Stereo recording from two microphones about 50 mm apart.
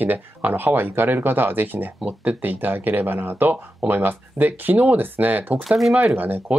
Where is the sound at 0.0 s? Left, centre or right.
Right.